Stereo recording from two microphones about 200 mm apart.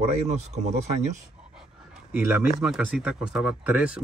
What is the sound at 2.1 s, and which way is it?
Speech, 5° right (ahead or behind).